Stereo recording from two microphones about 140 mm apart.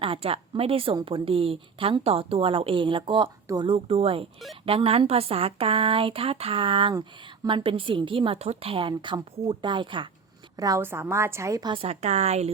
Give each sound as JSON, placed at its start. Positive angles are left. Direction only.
{"t": 0.0, "sound": "a woman's voice", "side_deg": -40}
{"t": 3.8, "sound": "a woman's voice", "side_deg": -45}
{"t": 10.6, "sound": "a woman's voice", "side_deg": -20}
{"t": 11.7, "sound": "speech", "side_deg": -45}